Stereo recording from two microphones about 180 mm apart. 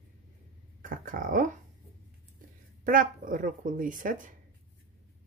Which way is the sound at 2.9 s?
50° right (ahead or behind).